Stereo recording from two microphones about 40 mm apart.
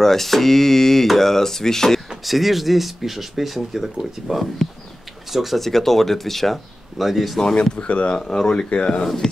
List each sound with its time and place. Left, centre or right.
0.0 s speech: centre
2.2 s speech: centre
7.8 s speech: left; by 9.3 s centre